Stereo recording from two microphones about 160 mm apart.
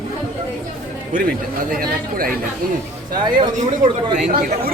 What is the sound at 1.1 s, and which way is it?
Speech, 60° right (ahead or behind).